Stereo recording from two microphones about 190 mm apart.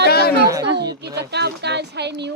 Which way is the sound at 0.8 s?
60° right (ahead or behind).